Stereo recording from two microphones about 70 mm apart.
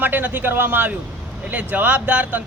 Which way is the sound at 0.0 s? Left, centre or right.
Right.